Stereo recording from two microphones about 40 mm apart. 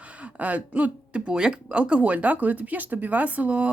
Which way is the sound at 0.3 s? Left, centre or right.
Right.